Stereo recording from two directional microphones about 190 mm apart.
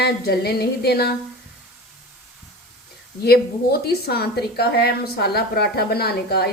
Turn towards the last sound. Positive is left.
turn(degrees=55)  # may be behind; listen again after turning